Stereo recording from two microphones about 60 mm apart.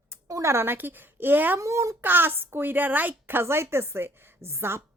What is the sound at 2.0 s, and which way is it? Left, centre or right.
Speech, right.